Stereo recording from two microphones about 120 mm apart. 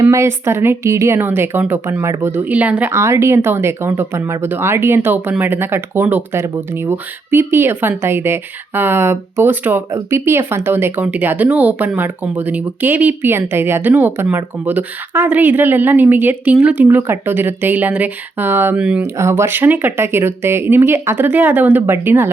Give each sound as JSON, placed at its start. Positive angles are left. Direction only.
{"t": 0.0, "sound": "a woman's voice", "side_deg": -25}
{"t": 19.0, "sound": "a woman's voice", "side_deg": -20}